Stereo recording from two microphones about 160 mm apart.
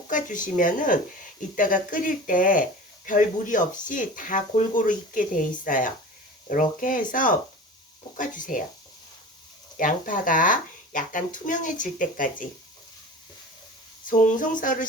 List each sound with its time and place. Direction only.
0.1 s speech: 55° left (ahead or behind)
9.7 s speech: 55° left (ahead or behind)
14.1 s speech: 55° left (ahead or behind)